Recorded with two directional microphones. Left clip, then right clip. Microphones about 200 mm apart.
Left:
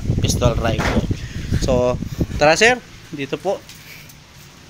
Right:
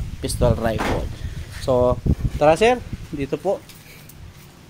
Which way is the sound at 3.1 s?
15° right (ahead or behind).